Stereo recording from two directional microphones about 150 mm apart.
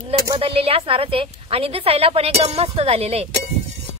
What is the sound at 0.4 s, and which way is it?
A woman's voice, 40° right (ahead or behind).